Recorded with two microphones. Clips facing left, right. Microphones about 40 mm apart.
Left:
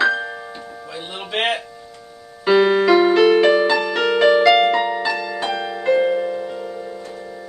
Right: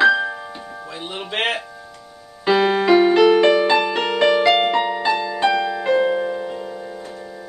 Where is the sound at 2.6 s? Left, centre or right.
Centre.